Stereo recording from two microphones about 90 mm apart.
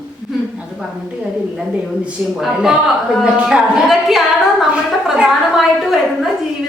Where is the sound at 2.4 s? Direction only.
5° right (ahead or behind).